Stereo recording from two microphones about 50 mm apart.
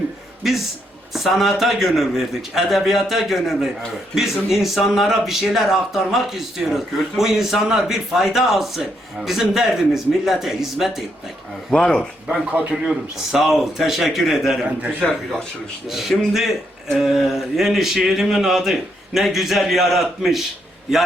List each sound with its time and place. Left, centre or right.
1.1 s speech: centre
11.7 s speech: centre
12.3 s speech: right
12.9 s speech: centre
15.9 s speech: centre